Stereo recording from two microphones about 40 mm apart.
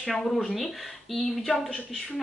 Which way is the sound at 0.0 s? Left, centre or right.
Centre.